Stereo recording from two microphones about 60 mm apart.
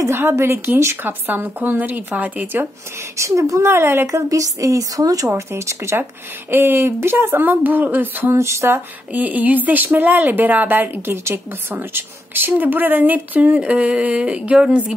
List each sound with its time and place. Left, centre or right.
0.1 s speech: right
1.0 s speech: right
3.2 s speech: right
3.6 s speech: right
4.3 s a woman's voice: right
5.3 s speech: right
6.5 s speech: right
8.4 s speech: right
9.1 s a woman's voice: right